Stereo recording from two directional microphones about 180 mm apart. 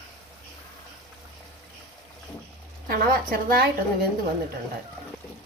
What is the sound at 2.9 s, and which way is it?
A woman's voice, 55° right (ahead or behind).